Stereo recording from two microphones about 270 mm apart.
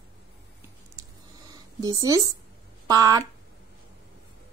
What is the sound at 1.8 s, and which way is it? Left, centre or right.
A woman's voice, centre.